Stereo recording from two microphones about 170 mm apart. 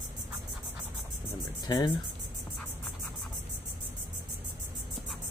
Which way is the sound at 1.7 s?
25° left (ahead or behind).